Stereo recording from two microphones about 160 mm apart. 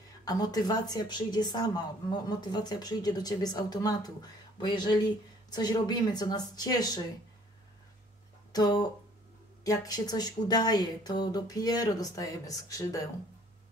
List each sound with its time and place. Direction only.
0.2 s a woman's voice: 25° left (ahead or behind)
8.5 s a woman's voice: 25° left (ahead or behind)